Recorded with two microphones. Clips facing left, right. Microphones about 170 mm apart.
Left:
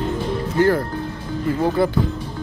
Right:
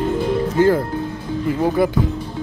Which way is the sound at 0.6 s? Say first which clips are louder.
Right 1 dB; 20° right (ahead or behind).